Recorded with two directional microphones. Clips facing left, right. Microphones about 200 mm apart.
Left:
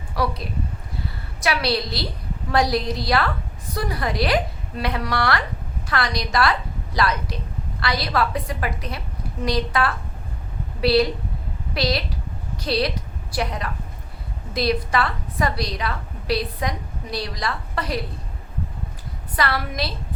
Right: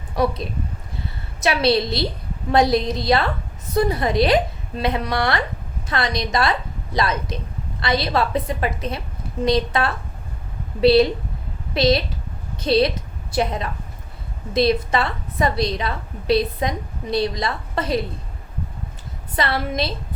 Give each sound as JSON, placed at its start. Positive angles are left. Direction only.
{"t": 0.2, "sound": "a woman's voice", "side_deg": -20}
{"t": 1.4, "sound": "a woman's voice", "side_deg": -25}
{"t": 19.4, "sound": "a woman's voice", "side_deg": -25}